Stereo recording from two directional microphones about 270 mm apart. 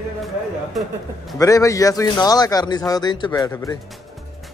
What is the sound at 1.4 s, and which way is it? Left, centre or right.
Speech, centre.